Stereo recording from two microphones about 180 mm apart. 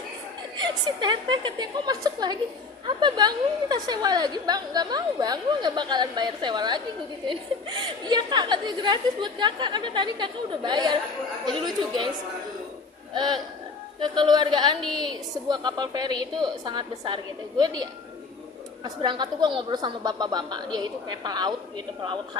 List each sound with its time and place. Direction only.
0.5 s a woman's voice: 25° right (ahead or behind)
13.1 s a woman's voice: 25° right (ahead or behind)
14.8 s a woman's voice: 5° left (ahead or behind)
15.0 s a woman's voice: 25° right (ahead or behind)
19.0 s a woman's voice: 25° right (ahead or behind)